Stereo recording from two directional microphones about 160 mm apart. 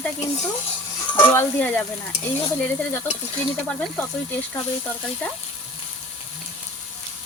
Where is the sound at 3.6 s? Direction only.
10° left (ahead or behind).